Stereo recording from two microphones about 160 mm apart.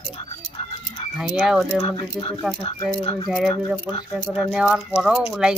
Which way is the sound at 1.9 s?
35° left (ahead or behind).